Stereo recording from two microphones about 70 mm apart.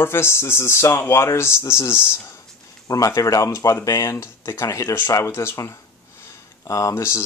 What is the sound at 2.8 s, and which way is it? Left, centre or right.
Speech, left.